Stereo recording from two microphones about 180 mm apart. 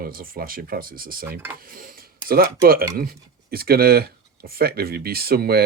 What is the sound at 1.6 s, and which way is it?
Dishes, 50° right (ahead or behind).